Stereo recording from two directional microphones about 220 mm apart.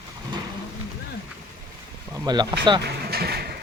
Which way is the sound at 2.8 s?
45° right (ahead or behind).